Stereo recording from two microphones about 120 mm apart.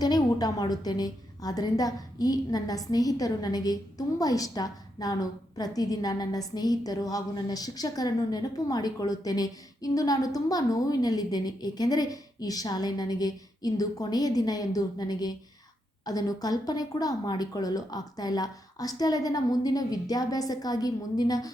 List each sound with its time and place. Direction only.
0.0 s a woman's voice: 35° left (ahead or behind)